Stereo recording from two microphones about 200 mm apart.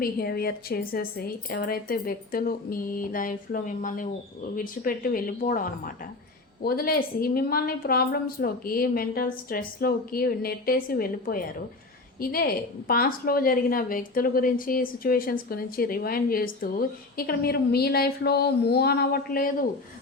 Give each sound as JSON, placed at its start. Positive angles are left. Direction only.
{"t": 0.0, "sound": "a woman's voice", "side_deg": 50}